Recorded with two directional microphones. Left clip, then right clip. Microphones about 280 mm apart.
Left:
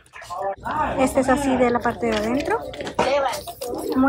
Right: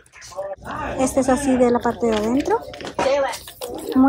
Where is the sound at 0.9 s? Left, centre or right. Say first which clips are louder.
Right 2 dB; centre.